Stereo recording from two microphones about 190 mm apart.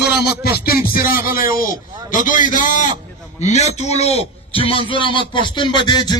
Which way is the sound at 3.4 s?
35° left (ahead or behind).